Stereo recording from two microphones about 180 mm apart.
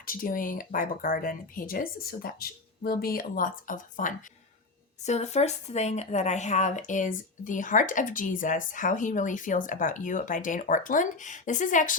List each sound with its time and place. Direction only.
0.0 s speech: 50° left (ahead or behind)